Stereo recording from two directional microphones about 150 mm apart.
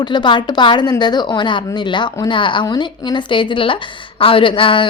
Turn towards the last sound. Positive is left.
turn(degrees=35)  # may be behind; listen again after turning